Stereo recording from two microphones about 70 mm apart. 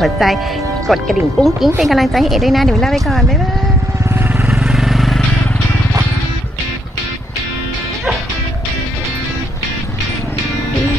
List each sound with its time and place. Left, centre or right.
0.0 s a woman's voice: centre
4.5 s vehicle: centre